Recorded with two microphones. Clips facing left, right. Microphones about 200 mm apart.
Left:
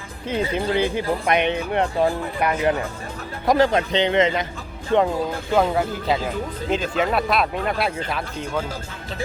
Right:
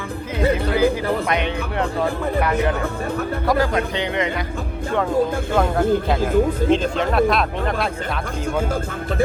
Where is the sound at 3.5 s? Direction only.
25° left (ahead or behind).